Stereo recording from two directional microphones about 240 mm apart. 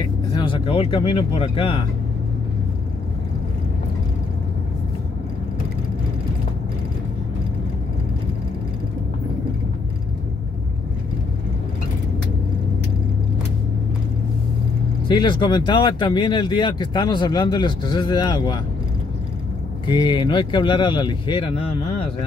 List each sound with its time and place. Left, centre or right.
0.4 s speech: left
15.0 s speech: centre
19.9 s speech: centre